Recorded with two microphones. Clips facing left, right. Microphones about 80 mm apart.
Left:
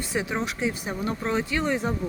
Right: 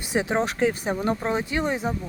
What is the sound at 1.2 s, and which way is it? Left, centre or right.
Speech, centre.